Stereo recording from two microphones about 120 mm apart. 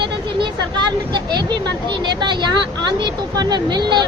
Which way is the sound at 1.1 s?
40° right (ahead or behind).